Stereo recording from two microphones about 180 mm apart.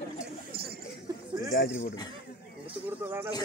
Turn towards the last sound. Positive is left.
turn(degrees=-10)  # may be behind; listen again after turning